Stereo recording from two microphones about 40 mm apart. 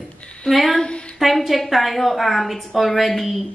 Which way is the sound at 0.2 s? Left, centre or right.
Left.